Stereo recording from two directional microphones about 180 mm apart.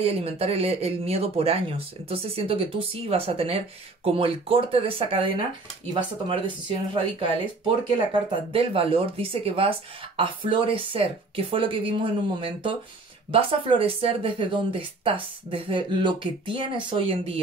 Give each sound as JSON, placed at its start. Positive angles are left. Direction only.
{"t": 0.0, "sound": "speech", "side_deg": -35}